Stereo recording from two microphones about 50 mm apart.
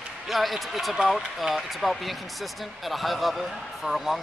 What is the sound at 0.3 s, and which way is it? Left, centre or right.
Speech, centre.